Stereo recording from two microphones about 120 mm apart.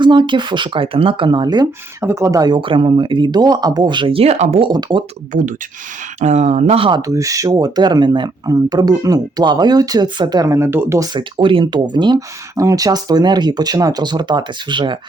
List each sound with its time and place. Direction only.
0.0 s speech: 40° right (ahead or behind)
2.0 s speech: 25° right (ahead or behind)
2.6 s speech: 45° right (ahead or behind)
4.7 s speech: 35° right (ahead or behind)
5.3 s speech: 90° right
6.1 s speech: 70° right (ahead or behind)
7.1 s speech: 25° right (ahead or behind)
11.1 s speech: 45° right (ahead or behind)